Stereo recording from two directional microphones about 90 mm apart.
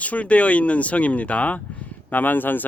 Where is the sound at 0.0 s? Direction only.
15° left (ahead or behind).